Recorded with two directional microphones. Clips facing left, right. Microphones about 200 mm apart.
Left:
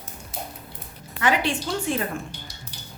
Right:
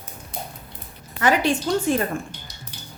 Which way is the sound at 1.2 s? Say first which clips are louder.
Right 3 dB; 40° right (ahead or behind).